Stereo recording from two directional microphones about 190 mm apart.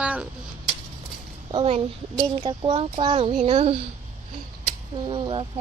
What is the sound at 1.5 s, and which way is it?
Speech, 35° right (ahead or behind).